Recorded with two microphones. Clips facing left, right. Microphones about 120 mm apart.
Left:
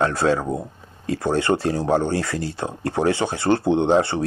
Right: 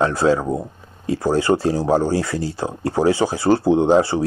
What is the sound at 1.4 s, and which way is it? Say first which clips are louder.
Speech: right 3 dB; 25° right (ahead or behind).